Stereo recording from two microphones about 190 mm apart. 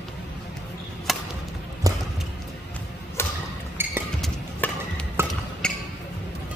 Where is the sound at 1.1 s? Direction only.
Centre (ahead or behind).